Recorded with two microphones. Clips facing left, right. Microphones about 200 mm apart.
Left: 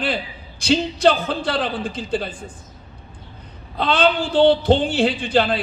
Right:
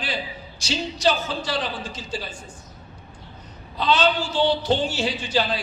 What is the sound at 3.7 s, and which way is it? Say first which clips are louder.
A man's voice: left 3 dB; 55° left (ahead or behind).